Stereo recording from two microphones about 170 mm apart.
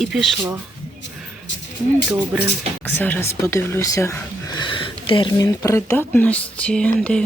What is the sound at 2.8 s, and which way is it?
Speech, 10° left (ahead or behind).